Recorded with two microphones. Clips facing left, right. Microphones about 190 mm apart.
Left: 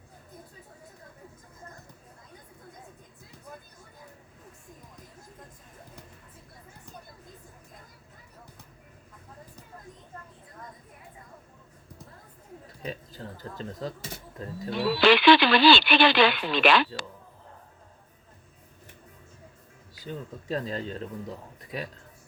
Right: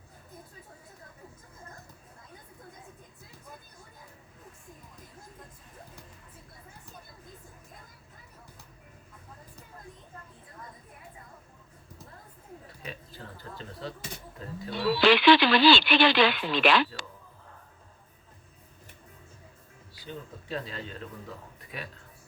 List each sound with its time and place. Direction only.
12.8 s a sound: 35° left (ahead or behind)
14.3 s speech: 40° left (ahead or behind)
15.0 s speech: 65° left (ahead or behind)
20.1 s speech: 40° left (ahead or behind)